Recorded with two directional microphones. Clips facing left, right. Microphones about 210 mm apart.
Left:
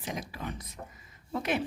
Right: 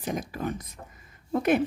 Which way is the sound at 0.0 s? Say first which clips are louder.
Right 7 dB; 50° right (ahead or behind).